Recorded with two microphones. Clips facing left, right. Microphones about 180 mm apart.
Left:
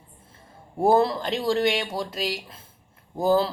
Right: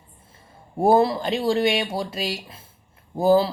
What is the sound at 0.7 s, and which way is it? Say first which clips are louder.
Speech: right 2 dB; 10° right (ahead or behind).